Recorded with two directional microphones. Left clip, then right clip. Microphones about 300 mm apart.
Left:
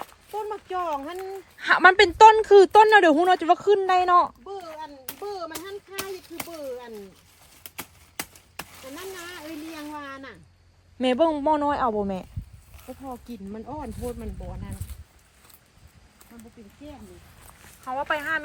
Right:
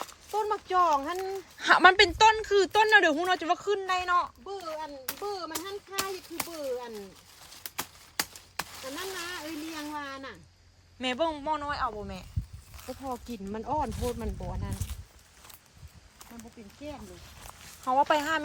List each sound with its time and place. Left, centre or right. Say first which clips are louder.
0.0 s a woman's voice: right 1 dB; centre
4.4 s a sound: even; centre
11.0 s a woman's voice: left 8 dB; centre
12.7 s speech: right 1 dB; centre; by 14.7 s right
17.8 s speech: right 2 dB; centre